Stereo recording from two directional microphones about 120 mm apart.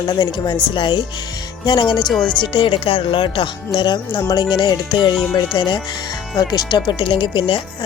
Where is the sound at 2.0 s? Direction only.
5° left (ahead or behind).